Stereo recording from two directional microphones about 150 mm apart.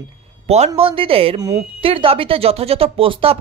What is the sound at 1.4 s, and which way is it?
Speech, 20° right (ahead or behind).